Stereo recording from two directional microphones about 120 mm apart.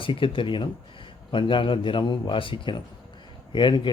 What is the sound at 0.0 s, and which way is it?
Speech, 45° left (ahead or behind).